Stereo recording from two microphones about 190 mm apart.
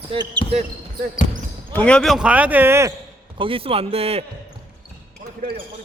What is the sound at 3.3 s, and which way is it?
Speech, 30° right (ahead or behind).